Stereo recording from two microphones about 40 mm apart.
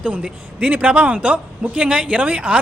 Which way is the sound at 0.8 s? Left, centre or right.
Right.